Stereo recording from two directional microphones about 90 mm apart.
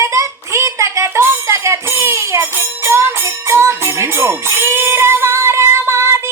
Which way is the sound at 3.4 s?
25° right (ahead or behind).